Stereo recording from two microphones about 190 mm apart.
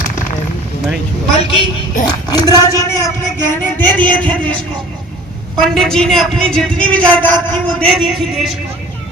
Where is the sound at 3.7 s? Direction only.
10° left (ahead or behind).